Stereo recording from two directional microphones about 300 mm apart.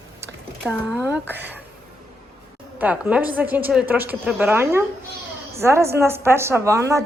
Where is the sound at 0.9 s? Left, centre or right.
Centre.